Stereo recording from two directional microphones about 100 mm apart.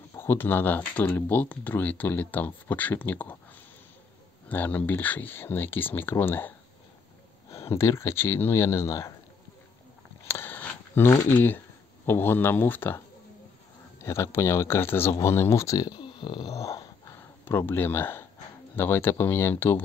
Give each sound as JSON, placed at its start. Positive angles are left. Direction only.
{"t": 0.1, "sound": "speech", "side_deg": 25}
{"t": 4.5, "sound": "speech", "side_deg": 15}
{"t": 7.5, "sound": "speech", "side_deg": 30}
{"t": 10.2, "sound": "a sound", "side_deg": 25}
{"t": 11.2, "sound": "speech", "side_deg": 20}
{"t": 14.0, "sound": "speech", "side_deg": 25}
{"t": 16.0, "sound": "a sound", "side_deg": 55}
{"t": 16.6, "sound": "a sound", "side_deg": 35}
{"t": 17.5, "sound": "speech", "side_deg": 20}